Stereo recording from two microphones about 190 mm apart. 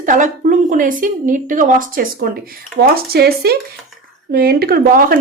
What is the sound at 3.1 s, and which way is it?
Speech, 55° right (ahead or behind).